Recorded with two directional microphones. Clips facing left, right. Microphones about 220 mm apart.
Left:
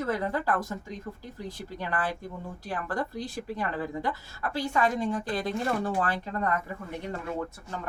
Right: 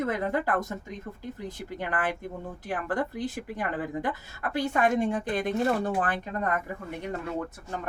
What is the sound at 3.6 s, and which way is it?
Speech, 50° right (ahead or behind).